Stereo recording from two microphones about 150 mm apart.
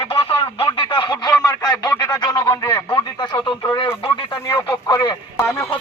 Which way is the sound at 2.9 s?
30° left (ahead or behind).